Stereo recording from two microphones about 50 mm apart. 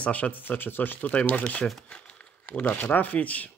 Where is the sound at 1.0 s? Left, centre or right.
Left.